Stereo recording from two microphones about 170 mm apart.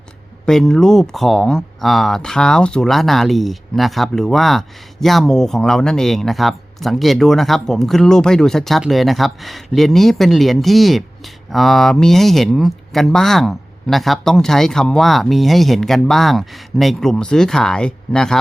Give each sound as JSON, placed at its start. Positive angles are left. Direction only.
{"t": 0.4, "sound": "speech", "side_deg": 5}